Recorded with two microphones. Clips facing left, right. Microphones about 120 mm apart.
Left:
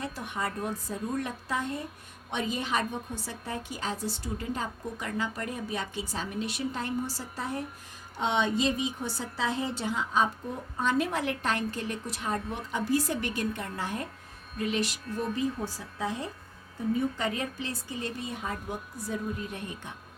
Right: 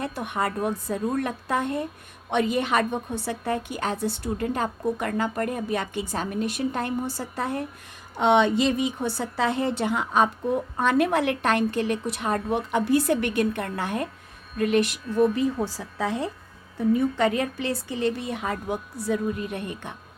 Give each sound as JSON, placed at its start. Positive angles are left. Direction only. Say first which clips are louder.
{"t": 0.0, "sound": "a woman's voice", "louder": "right 6 dB", "side_deg": -60}